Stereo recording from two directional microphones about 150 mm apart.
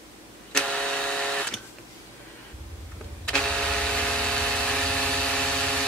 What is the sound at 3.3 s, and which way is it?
Vehicle, 5° left (ahead or behind).